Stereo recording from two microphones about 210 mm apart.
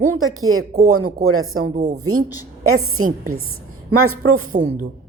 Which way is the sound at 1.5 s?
80° right.